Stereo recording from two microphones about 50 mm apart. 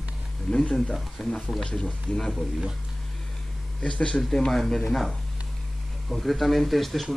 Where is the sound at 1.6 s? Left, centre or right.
Centre.